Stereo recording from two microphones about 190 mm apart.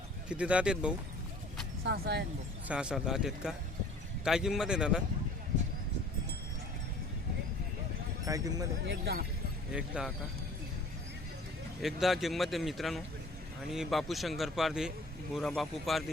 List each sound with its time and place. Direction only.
0.3 s speech: 5° right (ahead or behind)
1.8 s speech: 60° right (ahead or behind)
2.6 s speech: 5° right (ahead or behind)
8.3 s speech: 20° right (ahead or behind)
8.9 s speech: 55° right (ahead or behind)
9.7 s speech: 5° right (ahead or behind)
11.8 s speech: centre (ahead or behind)